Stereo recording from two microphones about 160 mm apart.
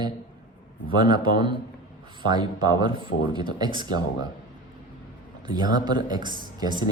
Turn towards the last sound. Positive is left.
turn(degrees=-25)  # may be behind; listen again after turning